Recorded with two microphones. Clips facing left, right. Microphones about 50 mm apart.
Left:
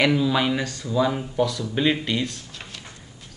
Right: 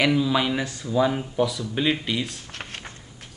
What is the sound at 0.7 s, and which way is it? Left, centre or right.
Speech, centre.